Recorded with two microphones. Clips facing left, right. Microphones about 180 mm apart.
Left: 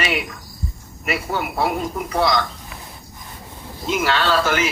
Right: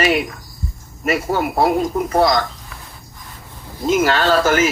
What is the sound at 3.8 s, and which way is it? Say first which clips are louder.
Speech: right 5 dB; 45° right (ahead or behind).